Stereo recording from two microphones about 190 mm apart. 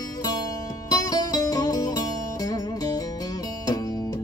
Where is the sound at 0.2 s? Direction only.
20° left (ahead or behind).